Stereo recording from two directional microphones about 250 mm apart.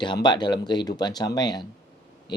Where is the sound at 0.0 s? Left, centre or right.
Centre.